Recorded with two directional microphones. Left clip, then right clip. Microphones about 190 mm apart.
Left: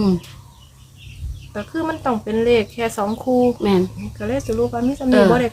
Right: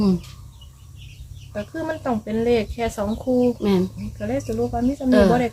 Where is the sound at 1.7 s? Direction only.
10° left (ahead or behind).